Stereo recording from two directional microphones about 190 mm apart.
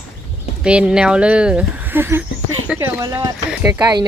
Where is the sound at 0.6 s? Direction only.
5° right (ahead or behind).